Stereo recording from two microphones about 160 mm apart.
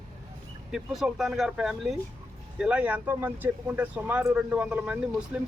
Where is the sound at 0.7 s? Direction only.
Centre (ahead or behind).